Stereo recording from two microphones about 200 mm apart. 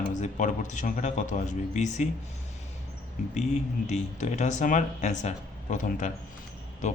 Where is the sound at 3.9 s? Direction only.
35° left (ahead or behind).